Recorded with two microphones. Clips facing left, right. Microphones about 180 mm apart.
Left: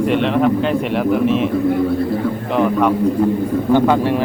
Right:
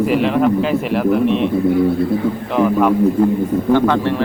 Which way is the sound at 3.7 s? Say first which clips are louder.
Left 2 dB; 15° left (ahead or behind).